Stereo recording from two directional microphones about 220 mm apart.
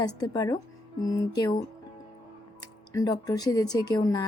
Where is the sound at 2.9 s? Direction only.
15° left (ahead or behind).